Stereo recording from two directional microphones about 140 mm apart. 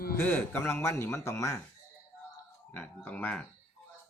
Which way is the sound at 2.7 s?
15° left (ahead or behind).